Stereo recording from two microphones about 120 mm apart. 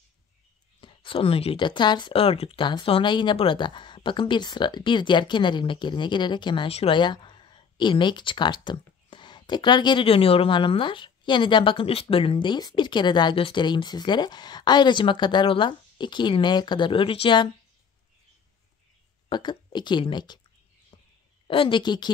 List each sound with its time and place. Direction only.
0.7 s speech: 45° left (ahead or behind)
19.2 s speech: 40° left (ahead or behind)
20.9 s a sound: 40° left (ahead or behind)
21.5 s speech: 45° left (ahead or behind)